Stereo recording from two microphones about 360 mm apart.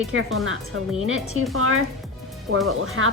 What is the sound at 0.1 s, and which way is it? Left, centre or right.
Speech, right.